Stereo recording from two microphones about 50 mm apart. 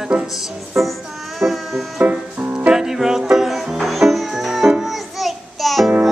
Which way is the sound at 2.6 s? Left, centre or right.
Centre.